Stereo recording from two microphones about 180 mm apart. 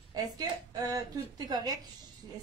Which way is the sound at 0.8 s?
20° right (ahead or behind).